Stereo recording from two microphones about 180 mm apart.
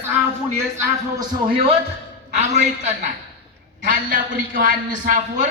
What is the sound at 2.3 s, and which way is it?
A man's voice, 40° right (ahead or behind).